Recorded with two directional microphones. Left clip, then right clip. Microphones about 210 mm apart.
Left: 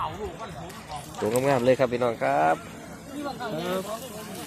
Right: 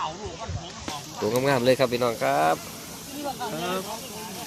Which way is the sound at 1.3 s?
15° right (ahead or behind).